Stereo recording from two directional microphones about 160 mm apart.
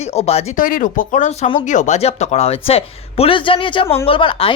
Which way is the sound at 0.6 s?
60° left (ahead or behind).